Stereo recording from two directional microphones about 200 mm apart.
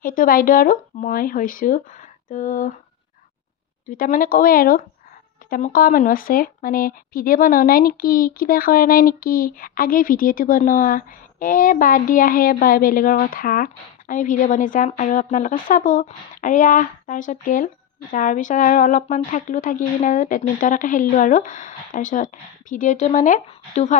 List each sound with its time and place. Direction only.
0.0 s speech: 45° left (ahead or behind)
3.8 s speech: 40° left (ahead or behind)